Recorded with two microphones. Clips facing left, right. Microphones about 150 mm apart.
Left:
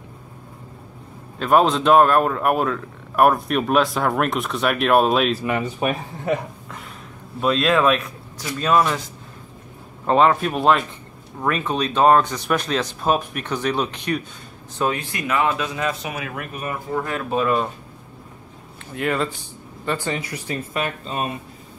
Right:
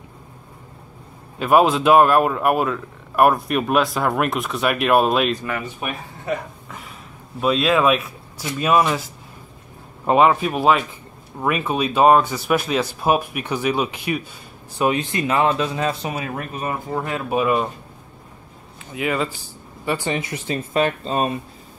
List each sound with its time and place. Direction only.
1.4 s a man's voice: 5° right (ahead or behind)
5.4 s speech: 25° left (ahead or behind)
7.3 s speech: 5° right (ahead or behind)
10.0 s a man's voice: 10° right (ahead or behind)
14.8 s speech: 20° right (ahead or behind)
18.9 s speech: 5° right (ahead or behind)
20.2 s speech: 25° right (ahead or behind)